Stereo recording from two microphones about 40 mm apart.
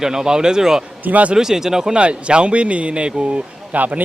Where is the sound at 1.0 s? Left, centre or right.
Right.